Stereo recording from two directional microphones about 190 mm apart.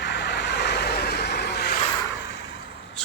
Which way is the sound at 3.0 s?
5° left (ahead or behind).